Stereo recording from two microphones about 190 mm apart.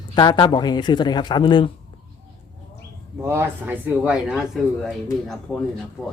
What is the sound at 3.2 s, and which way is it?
Speech, 10° right (ahead or behind).